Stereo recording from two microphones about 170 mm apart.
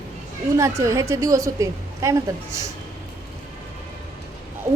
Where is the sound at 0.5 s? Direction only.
20° right (ahead or behind).